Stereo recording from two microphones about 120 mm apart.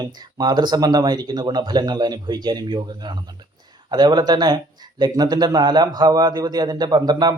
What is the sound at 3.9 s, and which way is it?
A man's voice, 35° right (ahead or behind).